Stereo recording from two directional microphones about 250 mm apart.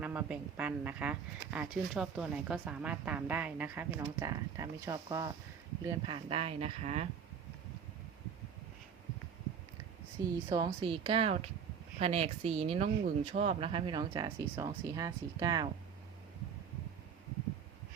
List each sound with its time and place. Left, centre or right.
0.0 s speech: centre; by 7.1 s right
10.2 s speech: centre